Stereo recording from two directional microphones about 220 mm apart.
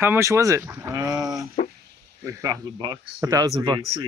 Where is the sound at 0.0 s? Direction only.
10° right (ahead or behind).